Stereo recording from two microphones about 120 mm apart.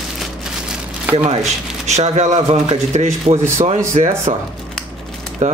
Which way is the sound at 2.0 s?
65° right (ahead or behind).